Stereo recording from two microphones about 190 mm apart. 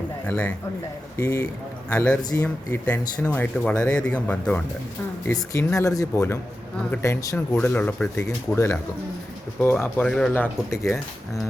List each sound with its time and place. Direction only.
0.3 s speech: 10° left (ahead or behind)
5.5 s speech: 15° left (ahead or behind)